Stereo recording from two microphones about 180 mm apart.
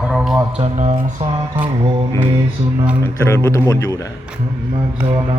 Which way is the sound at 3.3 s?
15° left (ahead or behind).